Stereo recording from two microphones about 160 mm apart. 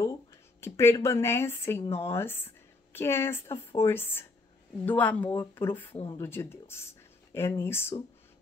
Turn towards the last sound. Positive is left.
turn(degrees=15)  # may be behind; listen again after turning